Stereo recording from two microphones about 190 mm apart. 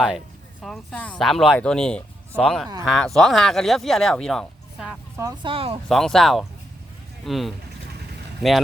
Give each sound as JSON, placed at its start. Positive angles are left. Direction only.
{"t": 0.6, "sound": "speech", "side_deg": 0}
{"t": 5.1, "sound": "speech", "side_deg": -20}
{"t": 5.9, "sound": "speech", "side_deg": 0}